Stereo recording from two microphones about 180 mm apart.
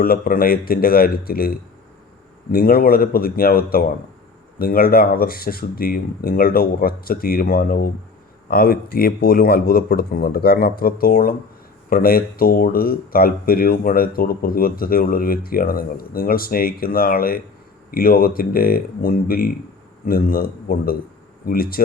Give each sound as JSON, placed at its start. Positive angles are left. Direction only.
{"t": 0.0, "sound": "speech", "side_deg": 55}